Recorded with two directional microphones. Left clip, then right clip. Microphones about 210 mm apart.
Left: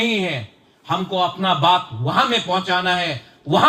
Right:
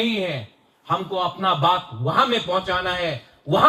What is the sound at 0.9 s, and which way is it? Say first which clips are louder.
Speech: left 3 dB; 50° left (ahead or behind).